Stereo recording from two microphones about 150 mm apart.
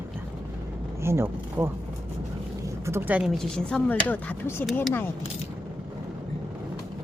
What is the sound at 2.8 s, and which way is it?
Speech, 15° right (ahead or behind).